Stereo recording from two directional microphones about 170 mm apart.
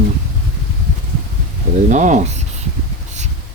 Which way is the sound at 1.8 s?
45° right (ahead or behind).